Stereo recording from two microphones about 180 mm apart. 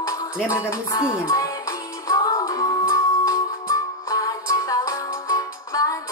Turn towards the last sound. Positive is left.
turn(degrees=20)  # may be behind; listen again after turning